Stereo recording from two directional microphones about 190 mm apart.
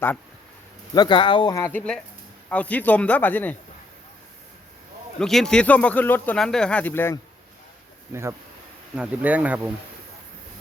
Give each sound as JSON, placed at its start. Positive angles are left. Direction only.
{"t": 0.9, "sound": "speech", "side_deg": 25}
{"t": 1.6, "sound": "speech", "side_deg": 5}
{"t": 5.2, "sound": "speech", "side_deg": 0}
{"t": 8.1, "sound": "speech", "side_deg": -15}